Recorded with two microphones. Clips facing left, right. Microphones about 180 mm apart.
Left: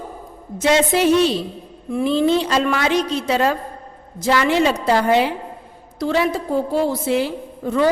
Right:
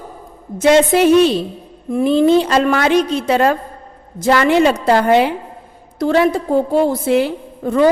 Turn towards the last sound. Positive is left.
turn(degrees=-55)  # may be behind; listen again after turning